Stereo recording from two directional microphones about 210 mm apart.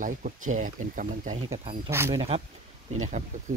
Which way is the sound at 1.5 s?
15° right (ahead or behind).